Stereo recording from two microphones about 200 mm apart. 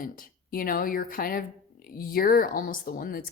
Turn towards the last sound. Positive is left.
turn(degrees=45)  # may be behind; listen again after turning